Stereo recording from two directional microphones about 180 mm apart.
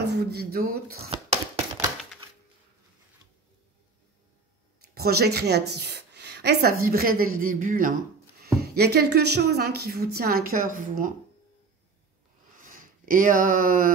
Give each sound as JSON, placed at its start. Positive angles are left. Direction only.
{"t": 0.0, "sound": "speech", "side_deg": -65}
{"t": 4.9, "sound": "speech", "side_deg": -60}
{"t": 8.4, "sound": "speech", "side_deg": -60}
{"t": 12.6, "sound": "speech", "side_deg": -50}